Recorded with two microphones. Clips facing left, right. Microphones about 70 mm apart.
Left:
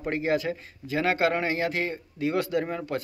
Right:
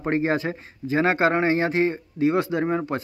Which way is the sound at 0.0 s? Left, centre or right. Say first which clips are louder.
Right 3 dB; right.